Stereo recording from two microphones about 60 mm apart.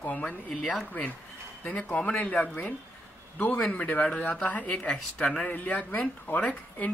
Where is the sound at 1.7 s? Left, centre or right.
Left.